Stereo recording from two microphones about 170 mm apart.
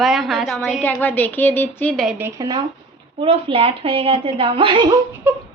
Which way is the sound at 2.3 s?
25° right (ahead or behind).